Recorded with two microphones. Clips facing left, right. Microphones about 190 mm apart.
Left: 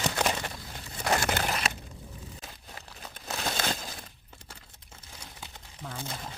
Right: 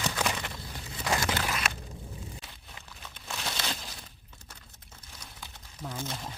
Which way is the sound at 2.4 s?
40° left (ahead or behind).